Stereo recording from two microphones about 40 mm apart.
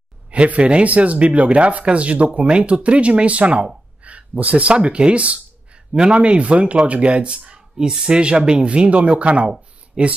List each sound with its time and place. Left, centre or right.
0.3 s speech: right